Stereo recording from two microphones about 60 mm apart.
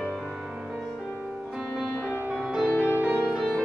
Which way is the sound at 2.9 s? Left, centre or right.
Right.